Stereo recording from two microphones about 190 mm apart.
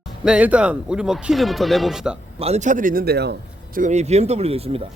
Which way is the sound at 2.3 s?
35° right (ahead or behind).